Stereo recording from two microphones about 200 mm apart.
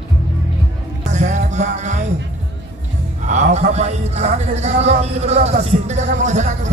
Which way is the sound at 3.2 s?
35° right (ahead or behind).